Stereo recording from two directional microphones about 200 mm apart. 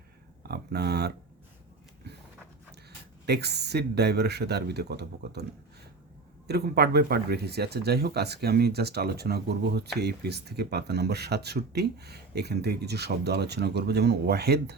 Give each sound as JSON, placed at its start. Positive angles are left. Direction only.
{"t": 0.4, "sound": "speech", "side_deg": -50}
{"t": 3.2, "sound": "speech", "side_deg": -55}
{"t": 6.5, "sound": "speech", "side_deg": -55}